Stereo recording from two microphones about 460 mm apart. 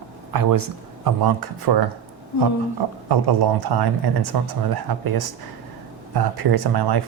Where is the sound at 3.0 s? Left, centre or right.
Right.